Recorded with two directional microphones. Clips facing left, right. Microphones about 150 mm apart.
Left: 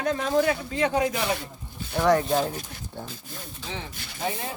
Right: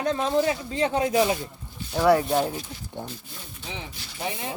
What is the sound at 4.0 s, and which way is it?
Speech, 50° left (ahead or behind).